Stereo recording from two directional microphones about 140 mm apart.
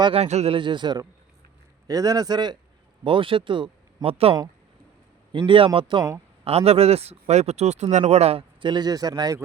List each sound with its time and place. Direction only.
0.0 s a man's voice: 45° right (ahead or behind); by 9.4 s 30° right (ahead or behind)